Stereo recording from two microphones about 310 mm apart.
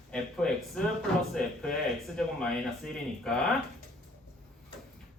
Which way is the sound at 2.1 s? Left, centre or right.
Centre.